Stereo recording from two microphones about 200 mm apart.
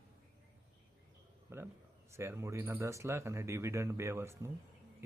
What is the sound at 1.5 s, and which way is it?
Speech, 10° right (ahead or behind).